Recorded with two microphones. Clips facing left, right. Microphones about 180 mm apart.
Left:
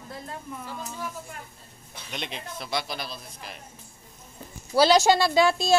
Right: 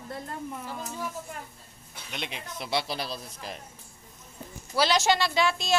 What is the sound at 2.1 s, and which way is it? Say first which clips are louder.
Speech: left 2 dB; 5° right (ahead or behind).